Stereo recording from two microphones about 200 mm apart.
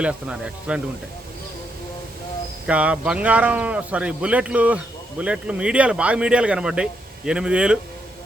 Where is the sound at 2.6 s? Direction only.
5° right (ahead or behind).